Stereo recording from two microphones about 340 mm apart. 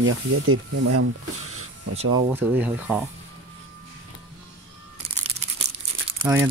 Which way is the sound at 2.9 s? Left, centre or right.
Centre.